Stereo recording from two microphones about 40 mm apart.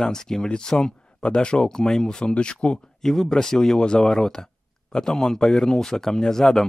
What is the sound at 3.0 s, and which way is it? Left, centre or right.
Speech, centre.